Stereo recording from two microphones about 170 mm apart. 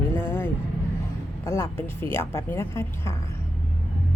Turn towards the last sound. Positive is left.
turn(degrees=15)  # may be behind; listen again after turning